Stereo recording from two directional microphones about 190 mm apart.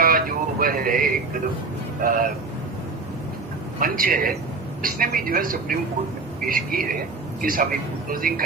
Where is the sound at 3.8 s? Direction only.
50° right (ahead or behind).